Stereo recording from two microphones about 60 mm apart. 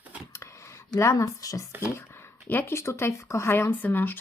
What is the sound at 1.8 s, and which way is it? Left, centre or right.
Speech, left.